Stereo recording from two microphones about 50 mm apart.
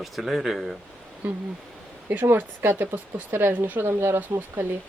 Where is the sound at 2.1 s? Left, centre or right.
Right.